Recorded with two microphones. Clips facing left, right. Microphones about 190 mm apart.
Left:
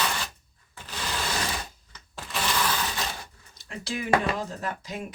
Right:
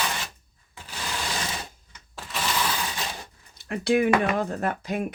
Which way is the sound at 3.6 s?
60° right (ahead or behind).